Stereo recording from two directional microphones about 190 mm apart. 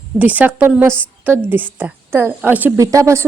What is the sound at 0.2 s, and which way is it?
A woman's voice, 10° right (ahead or behind).